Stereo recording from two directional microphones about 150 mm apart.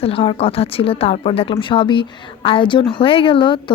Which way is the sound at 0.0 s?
40° left (ahead or behind).